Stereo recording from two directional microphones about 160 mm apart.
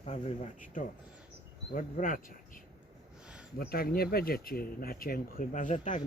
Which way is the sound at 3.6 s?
75° left (ahead or behind).